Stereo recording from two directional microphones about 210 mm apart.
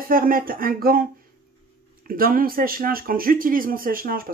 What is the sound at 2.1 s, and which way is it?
Speech, 45° right (ahead or behind).